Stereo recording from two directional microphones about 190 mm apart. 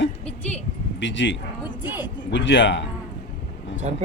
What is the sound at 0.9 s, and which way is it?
Speech, 75° left (ahead or behind).